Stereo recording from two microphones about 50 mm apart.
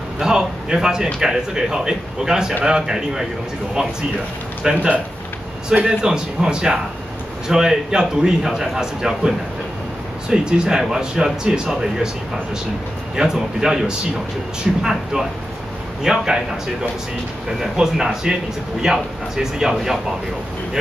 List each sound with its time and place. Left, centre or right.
0.2 s a man's voice: centre
4.6 s a man's voice: centre
10.3 s a man's voice: centre
13.1 s a man's voice: centre
17.6 s a man's voice: centre